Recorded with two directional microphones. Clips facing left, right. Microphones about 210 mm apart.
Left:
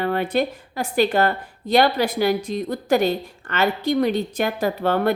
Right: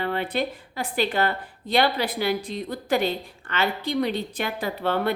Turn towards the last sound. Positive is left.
turn(degrees=45)  # may be behind; listen again after turning